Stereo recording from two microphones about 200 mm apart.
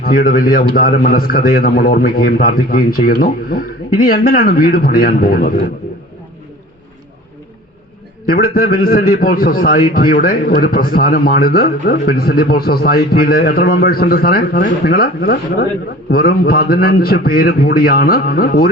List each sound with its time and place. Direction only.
0.0 s speech: 45° left (ahead or behind)
8.3 s speech: 45° left (ahead or behind)